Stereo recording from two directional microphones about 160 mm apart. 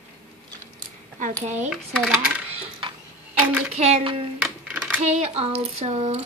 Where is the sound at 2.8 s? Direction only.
30° right (ahead or behind).